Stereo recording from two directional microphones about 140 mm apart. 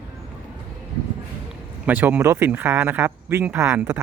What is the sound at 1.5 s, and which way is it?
Speech, 15° right (ahead or behind).